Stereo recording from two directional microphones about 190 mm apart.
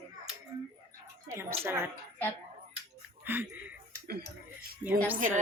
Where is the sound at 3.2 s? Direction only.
10° right (ahead or behind).